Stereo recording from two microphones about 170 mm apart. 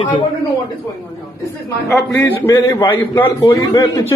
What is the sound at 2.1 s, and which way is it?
A man's voice, 20° left (ahead or behind).